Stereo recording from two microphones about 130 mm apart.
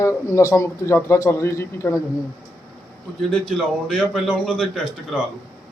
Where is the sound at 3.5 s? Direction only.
5° left (ahead or behind).